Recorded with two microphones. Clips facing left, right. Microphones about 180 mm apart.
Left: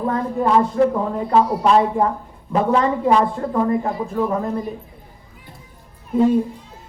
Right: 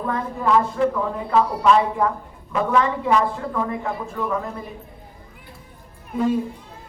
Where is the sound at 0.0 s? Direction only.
35° left (ahead or behind).